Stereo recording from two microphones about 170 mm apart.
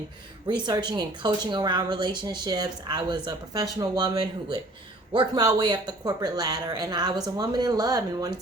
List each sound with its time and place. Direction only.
0.6 s speech: 25° right (ahead or behind)